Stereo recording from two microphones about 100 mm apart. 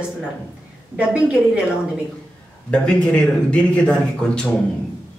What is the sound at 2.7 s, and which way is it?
Speech, 10° left (ahead or behind).